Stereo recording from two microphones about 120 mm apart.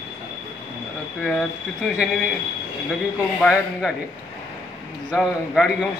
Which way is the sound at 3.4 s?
5° right (ahead or behind).